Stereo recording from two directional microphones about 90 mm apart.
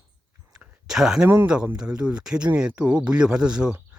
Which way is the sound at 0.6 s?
5° right (ahead or behind).